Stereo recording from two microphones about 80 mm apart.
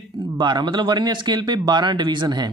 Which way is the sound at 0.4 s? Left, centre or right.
Right.